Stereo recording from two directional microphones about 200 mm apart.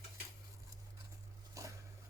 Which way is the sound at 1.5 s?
15° right (ahead or behind).